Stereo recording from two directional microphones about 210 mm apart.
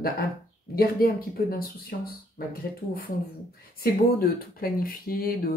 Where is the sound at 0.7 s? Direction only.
45° left (ahead or behind).